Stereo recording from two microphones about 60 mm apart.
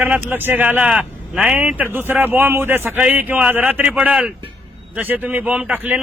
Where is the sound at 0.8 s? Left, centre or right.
Centre.